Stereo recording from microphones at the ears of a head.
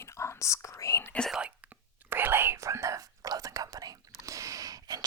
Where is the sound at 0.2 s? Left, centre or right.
Left.